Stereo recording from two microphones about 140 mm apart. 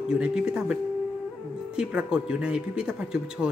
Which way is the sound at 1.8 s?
5° right (ahead or behind).